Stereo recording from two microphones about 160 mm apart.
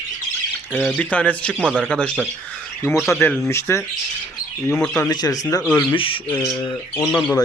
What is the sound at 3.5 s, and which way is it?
Speech, 15° left (ahead or behind).